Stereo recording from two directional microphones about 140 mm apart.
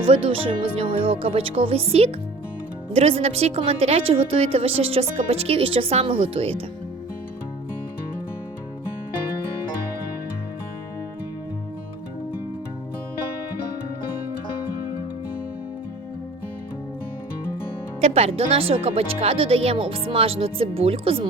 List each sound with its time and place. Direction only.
0.0 s a woman's voice: 40° right (ahead or behind)
18.0 s a woman's voice: 45° right (ahead or behind)